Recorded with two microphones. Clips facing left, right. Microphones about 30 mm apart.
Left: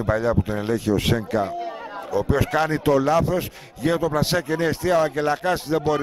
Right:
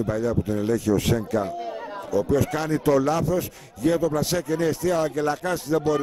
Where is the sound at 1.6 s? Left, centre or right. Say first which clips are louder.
Left 1 dB; centre.